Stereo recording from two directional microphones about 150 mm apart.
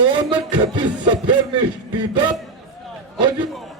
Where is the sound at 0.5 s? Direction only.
30° right (ahead or behind).